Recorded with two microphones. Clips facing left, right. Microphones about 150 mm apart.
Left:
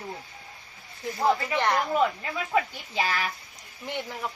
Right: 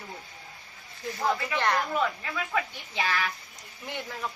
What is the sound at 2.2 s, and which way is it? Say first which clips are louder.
Speech: left 4 dB; 30° left (ahead or behind).